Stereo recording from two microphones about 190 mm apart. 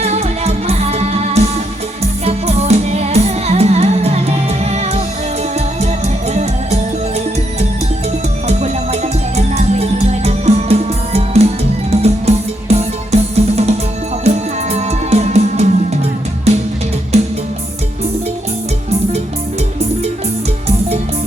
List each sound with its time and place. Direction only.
0.0 s music: 35° right (ahead or behind)
8.4 s music: 35° right (ahead or behind)